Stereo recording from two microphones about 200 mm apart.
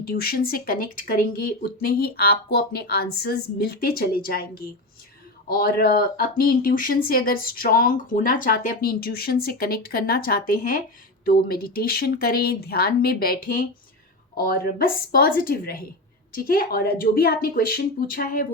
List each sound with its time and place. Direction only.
0.0 s speech: 50° left (ahead or behind)